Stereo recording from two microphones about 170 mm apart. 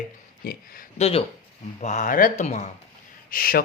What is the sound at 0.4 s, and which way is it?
Speech, 60° left (ahead or behind).